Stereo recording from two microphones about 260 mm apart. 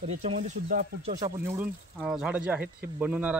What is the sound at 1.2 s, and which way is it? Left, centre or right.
A man's voice, centre.